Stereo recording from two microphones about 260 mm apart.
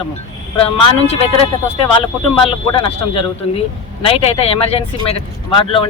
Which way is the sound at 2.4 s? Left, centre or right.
Left.